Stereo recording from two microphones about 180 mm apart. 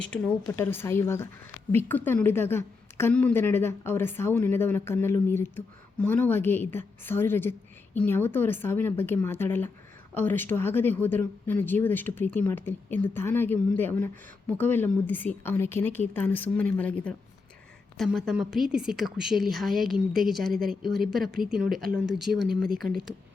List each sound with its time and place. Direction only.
0.0 s a woman's voice: 10° left (ahead or behind)
22.6 s speech: 55° right (ahead or behind)
22.9 s a woman's voice: centre (ahead or behind)